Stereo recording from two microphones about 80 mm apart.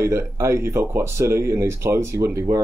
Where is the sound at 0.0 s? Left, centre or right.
Right.